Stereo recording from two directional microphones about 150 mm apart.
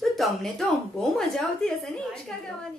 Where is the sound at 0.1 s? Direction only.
Centre (ahead or behind).